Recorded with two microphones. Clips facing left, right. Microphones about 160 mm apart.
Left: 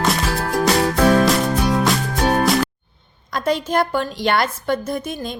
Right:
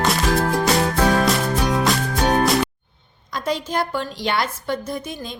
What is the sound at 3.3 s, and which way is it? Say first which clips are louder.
A woman's voice: left 4 dB; 55° left (ahead or behind).